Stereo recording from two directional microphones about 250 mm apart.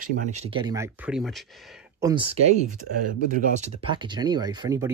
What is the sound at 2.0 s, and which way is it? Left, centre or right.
Speech, centre.